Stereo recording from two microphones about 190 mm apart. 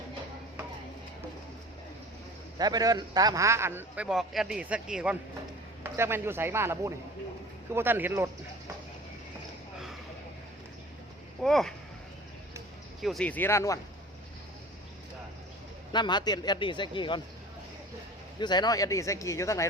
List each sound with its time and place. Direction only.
2.6 s a man's voice: 20° right (ahead or behind)
11.4 s speech: centre (ahead or behind)
13.0 s speech: centre (ahead or behind)
15.9 s a man's voice: 25° left (ahead or behind)
18.3 s speech: 25° left (ahead or behind)